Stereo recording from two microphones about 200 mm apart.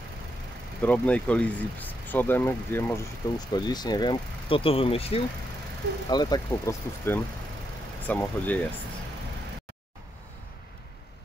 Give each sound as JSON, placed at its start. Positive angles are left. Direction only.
{"t": 0.8, "sound": "speech", "side_deg": 5}